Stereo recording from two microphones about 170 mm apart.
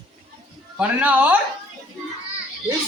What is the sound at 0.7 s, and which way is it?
Speech, 10° right (ahead or behind).